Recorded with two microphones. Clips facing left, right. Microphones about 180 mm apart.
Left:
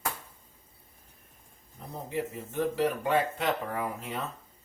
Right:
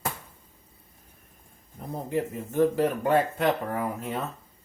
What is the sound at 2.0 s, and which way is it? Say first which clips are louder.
Speech: right 4 dB; 45° right (ahead or behind).